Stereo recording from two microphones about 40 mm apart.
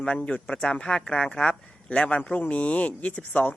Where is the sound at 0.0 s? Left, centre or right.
Left.